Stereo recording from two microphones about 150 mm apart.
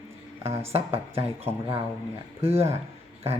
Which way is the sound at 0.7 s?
40° right (ahead or behind).